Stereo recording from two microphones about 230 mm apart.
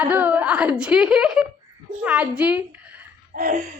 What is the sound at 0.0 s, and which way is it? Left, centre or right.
A woman's voice, centre.